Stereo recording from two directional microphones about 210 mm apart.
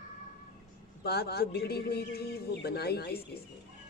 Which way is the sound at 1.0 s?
50° left (ahead or behind).